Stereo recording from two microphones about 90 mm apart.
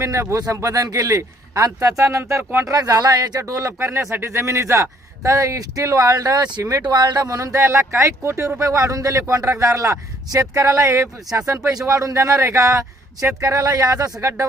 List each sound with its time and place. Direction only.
0.0 s speech: 35° right (ahead or behind)
2.4 s speech: 20° right (ahead or behind)
2.6 s speech: 45° right (ahead or behind)
6.8 s speech: 50° right (ahead or behind); by 14.4 s 35° right (ahead or behind)